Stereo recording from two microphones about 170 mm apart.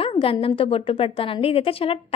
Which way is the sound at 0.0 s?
35° left (ahead or behind).